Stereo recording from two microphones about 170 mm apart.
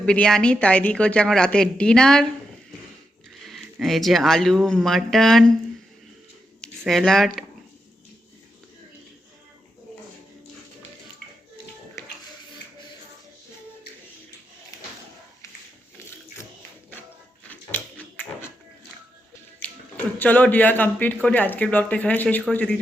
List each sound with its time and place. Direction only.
0.0 s a woman's voice: 5° left (ahead or behind)
3.4 s speech: centre (ahead or behind)
6.6 s speech: 5° left (ahead or behind)
12.0 s music: 15° left (ahead or behind)
17.5 s a sound: 10° left (ahead or behind)
19.6 s speech: 10° left (ahead or behind)